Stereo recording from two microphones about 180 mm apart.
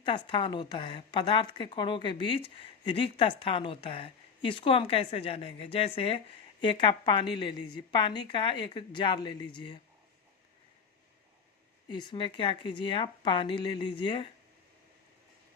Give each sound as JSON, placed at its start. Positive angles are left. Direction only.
{"t": 0.0, "sound": "speech", "side_deg": 25}
{"t": 11.9, "sound": "speech", "side_deg": 25}